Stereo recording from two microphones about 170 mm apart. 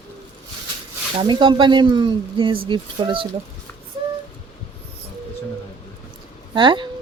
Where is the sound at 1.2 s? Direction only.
30° right (ahead or behind).